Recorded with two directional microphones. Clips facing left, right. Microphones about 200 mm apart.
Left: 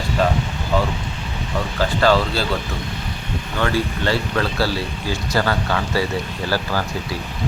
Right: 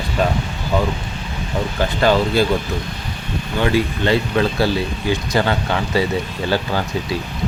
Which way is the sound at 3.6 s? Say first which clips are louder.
Right 3 dB; 15° right (ahead or behind).